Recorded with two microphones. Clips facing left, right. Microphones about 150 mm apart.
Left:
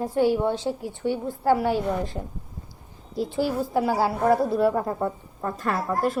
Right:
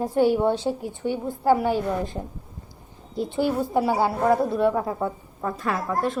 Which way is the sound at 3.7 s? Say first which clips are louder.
Left 1 dB; centre (ahead or behind).